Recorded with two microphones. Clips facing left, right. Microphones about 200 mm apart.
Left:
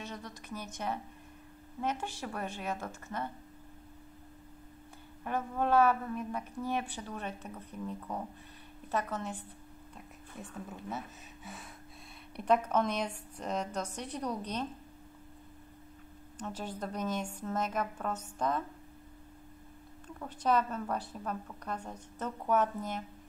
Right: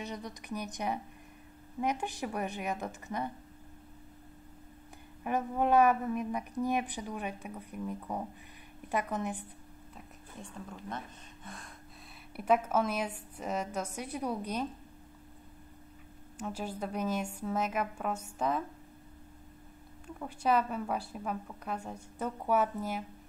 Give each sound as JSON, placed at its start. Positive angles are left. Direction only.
{"t": 0.0, "sound": "a woman's voice", "side_deg": -15}
{"t": 5.2, "sound": "a woman's voice", "side_deg": -15}
{"t": 9.9, "sound": "a woman's voice", "side_deg": 5}
{"t": 16.3, "sound": "a woman's voice", "side_deg": -10}
{"t": 20.2, "sound": "a woman's voice", "side_deg": -10}